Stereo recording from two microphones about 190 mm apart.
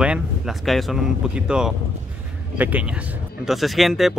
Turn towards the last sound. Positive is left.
turn(degrees=0)  # may be behind; listen again after turning